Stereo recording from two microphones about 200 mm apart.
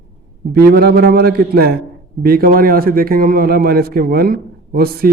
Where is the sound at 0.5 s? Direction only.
50° right (ahead or behind).